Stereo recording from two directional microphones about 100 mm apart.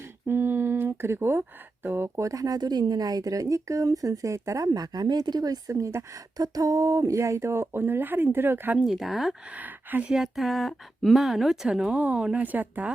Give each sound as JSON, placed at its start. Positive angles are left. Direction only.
{"t": 0.3, "sound": "speech", "side_deg": -25}
{"t": 8.8, "sound": "speech", "side_deg": 0}
{"t": 9.6, "sound": "speech", "side_deg": -15}
{"t": 10.1, "sound": "speech", "side_deg": -5}